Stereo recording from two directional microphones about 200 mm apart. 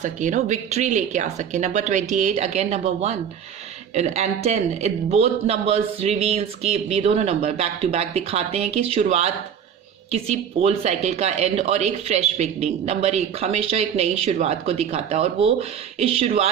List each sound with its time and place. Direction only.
0.0 s speech: 40° right (ahead or behind)